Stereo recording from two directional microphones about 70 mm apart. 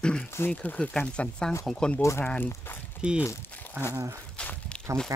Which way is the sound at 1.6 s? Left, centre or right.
Centre.